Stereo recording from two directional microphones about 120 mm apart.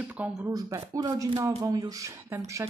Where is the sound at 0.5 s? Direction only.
30° right (ahead or behind).